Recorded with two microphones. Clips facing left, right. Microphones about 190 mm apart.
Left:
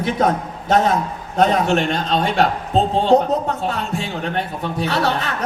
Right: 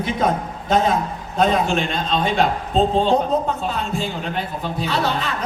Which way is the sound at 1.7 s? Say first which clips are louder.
Left 3 dB; 70° left (ahead or behind).